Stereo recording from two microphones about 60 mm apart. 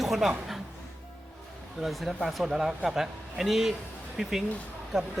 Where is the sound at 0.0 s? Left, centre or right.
Centre.